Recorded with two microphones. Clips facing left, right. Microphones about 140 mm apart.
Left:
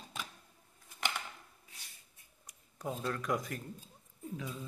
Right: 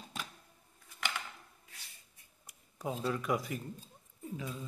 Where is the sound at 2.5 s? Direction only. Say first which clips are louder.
Right 1 dB; 5° right (ahead or behind).